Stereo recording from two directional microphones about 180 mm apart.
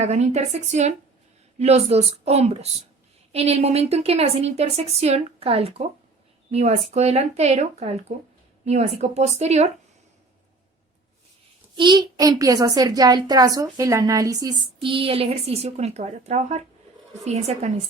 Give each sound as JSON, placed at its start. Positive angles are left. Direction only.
{"t": 0.0, "sound": "a woman's voice", "side_deg": -40}
{"t": 11.8, "sound": "a woman's voice", "side_deg": -25}